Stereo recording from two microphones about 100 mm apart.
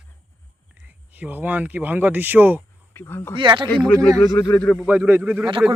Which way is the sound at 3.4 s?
50° right (ahead or behind).